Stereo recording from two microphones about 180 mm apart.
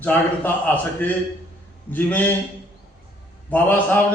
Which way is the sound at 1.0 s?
10° left (ahead or behind).